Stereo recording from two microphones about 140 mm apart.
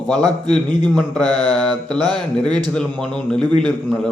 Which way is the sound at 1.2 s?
30° right (ahead or behind).